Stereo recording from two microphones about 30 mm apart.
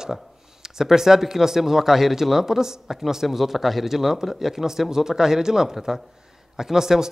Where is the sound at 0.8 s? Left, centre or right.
Centre.